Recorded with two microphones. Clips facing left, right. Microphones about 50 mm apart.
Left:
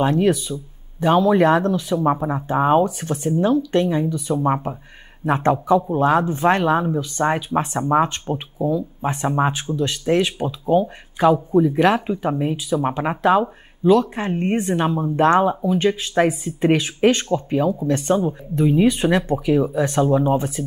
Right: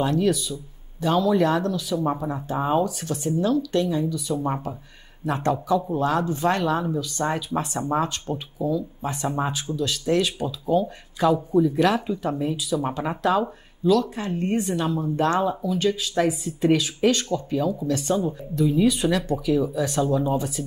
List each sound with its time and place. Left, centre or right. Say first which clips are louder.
0.0 s speech: left 4 dB; left